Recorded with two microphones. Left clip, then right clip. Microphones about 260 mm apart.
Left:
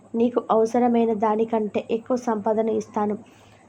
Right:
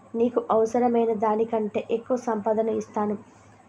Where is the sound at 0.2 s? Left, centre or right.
Centre.